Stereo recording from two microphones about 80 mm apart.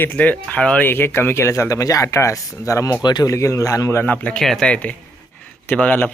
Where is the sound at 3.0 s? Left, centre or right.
Left.